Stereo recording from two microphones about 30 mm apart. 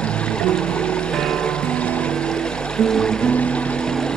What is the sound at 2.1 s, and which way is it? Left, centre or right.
Music, left.